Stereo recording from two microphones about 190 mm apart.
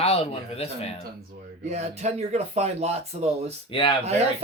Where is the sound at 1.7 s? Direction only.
35° right (ahead or behind).